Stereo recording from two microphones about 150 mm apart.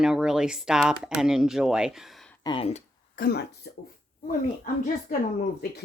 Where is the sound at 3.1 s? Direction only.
85° left.